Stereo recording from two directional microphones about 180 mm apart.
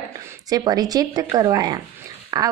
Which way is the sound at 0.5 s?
20° right (ahead or behind).